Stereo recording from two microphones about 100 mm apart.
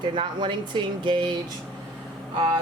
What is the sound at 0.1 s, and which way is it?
A woman's voice, 50° right (ahead or behind).